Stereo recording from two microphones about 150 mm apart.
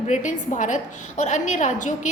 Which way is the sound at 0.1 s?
55° left (ahead or behind).